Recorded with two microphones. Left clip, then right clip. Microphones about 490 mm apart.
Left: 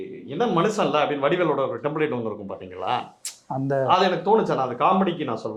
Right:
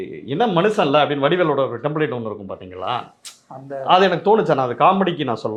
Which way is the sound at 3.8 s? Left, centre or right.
Right.